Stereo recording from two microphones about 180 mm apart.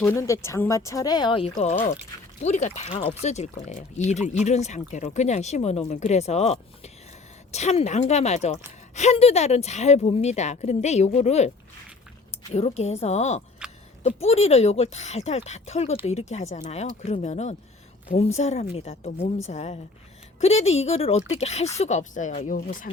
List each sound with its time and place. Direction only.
0.0 s speech: 15° left (ahead or behind); by 13.4 s 40° left (ahead or behind)
13.6 s a sound: 5° right (ahead or behind)
14.2 s speech: 35° left (ahead or behind)